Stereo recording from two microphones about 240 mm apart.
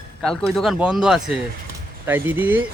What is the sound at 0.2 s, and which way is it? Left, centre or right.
Speech, centre.